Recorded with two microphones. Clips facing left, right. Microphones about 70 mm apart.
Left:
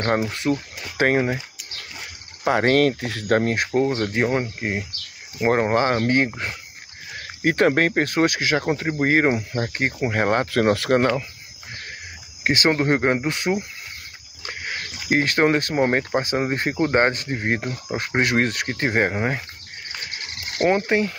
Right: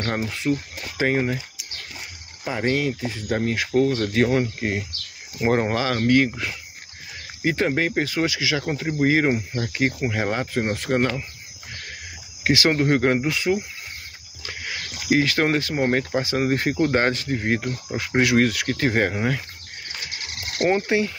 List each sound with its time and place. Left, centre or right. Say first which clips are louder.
0.2 s speech: left 1 dB; left
2.4 s speech: left 6 dB; left
3.3 s speech: left 4 dB; left
3.7 s speech: right 3 dB; left
7.2 s speech: left 3 dB; left
10.9 s speech: left 3 dB; left
12.4 s speech: even; left
13.3 s speech: right 1 dB; left
14.4 s a sound: left 2 dB; left
15.9 s speech: left 1 dB; left
20.0 s water: even; left
20.8 s speech: left 1 dB; left